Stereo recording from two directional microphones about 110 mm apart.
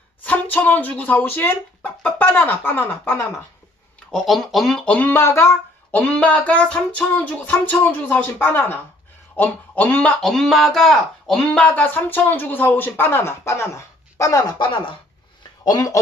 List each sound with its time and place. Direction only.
0.2 s speech: 15° left (ahead or behind)
4.1 s speech: centre (ahead or behind)
11.6 s speech: 15° left (ahead or behind); by 14.5 s 30° left (ahead or behind)
14.6 s speech: 45° left (ahead or behind)
15.6 s speech: 35° left (ahead or behind)